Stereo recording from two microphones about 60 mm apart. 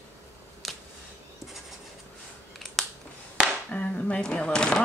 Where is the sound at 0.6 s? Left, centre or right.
Centre.